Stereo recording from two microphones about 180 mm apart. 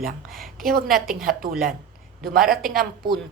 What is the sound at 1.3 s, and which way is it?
Speech, 50° right (ahead or behind).